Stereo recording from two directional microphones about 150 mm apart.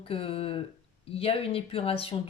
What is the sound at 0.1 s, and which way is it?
Speech, 40° left (ahead or behind).